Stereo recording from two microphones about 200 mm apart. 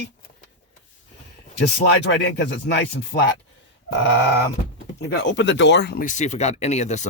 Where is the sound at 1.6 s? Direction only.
60° left (ahead or behind).